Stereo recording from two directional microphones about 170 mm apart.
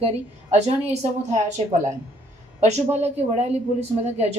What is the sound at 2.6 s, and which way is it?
A woman's voice, 40° right (ahead or behind).